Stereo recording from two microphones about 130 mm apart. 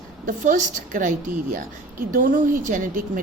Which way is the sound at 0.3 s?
85° right.